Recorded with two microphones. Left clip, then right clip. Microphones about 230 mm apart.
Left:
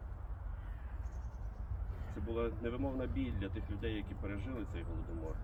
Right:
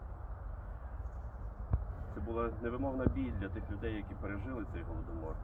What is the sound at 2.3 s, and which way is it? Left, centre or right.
Speech, left.